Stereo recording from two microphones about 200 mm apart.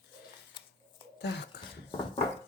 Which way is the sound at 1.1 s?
60° left (ahead or behind).